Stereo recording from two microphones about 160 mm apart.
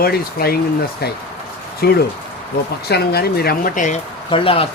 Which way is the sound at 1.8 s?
80° left.